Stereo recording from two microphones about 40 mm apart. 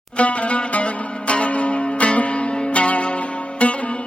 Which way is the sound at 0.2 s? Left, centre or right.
Left.